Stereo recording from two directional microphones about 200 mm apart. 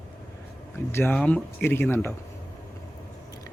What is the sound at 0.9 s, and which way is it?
Speech, 10° left (ahead or behind).